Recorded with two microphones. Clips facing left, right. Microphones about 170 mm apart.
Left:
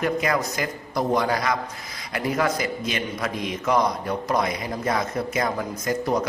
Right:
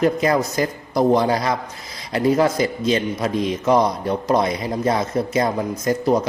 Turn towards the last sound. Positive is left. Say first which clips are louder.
# right 6 dB
turn(degrees=-25)  # may be behind; listen again after turning